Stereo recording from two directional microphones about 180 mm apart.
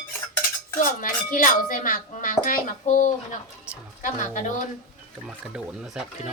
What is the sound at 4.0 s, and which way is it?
Speech, 45° left (ahead or behind).